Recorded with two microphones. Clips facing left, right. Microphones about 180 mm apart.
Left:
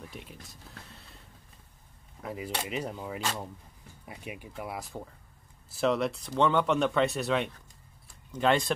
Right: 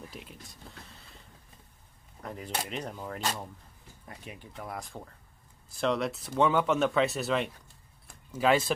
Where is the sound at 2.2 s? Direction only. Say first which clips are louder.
Left 1 dB; 5° left (ahead or behind).